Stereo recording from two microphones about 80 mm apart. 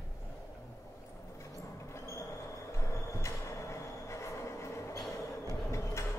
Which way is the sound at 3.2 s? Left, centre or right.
Left.